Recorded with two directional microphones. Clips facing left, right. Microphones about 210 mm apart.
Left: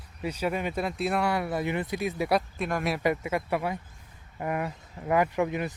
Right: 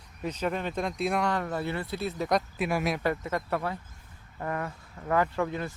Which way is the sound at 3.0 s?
10° left (ahead or behind).